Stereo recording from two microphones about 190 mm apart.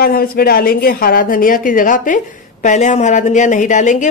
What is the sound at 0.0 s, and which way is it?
A woman's voice, 50° left (ahead or behind).